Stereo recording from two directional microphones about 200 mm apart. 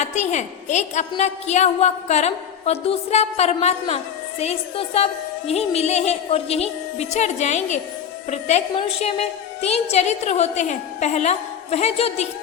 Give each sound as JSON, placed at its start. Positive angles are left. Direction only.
{"t": 0.0, "sound": "a woman's voice", "side_deg": 35}